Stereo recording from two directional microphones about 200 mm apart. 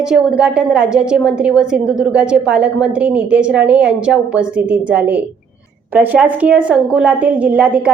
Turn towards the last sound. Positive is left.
turn(degrees=-5)  # may be behind; listen again after turning